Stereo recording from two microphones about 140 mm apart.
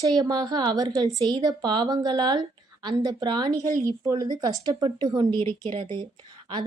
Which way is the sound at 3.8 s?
25° right (ahead or behind).